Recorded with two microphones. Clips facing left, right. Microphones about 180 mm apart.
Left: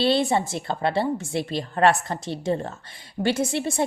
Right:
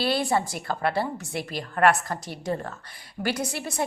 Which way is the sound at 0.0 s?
25° left (ahead or behind).